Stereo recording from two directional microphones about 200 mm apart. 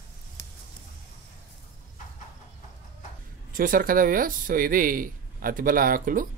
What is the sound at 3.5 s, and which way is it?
Speech, 45° right (ahead or behind).